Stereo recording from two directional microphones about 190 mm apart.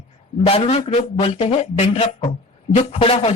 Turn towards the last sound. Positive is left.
turn(degrees=30)  # may be behind; listen again after turning